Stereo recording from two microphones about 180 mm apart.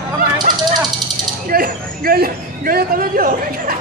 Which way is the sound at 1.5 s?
55° right (ahead or behind).